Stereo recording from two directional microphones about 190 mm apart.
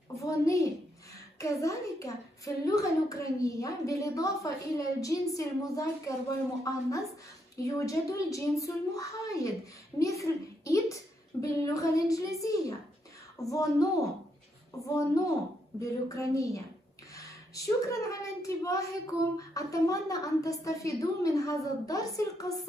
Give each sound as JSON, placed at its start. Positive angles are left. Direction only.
{"t": 0.2, "sound": "a child's voice", "side_deg": 15}